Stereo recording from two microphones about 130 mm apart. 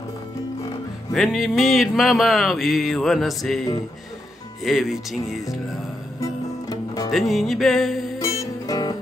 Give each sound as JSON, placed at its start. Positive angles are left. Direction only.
{"t": 1.1, "sound": "music", "side_deg": 0}
{"t": 4.6, "sound": "music", "side_deg": 0}
{"t": 6.1, "sound": "music", "side_deg": 25}
{"t": 7.1, "sound": "music", "side_deg": 0}
{"t": 8.2, "sound": "music", "side_deg": 25}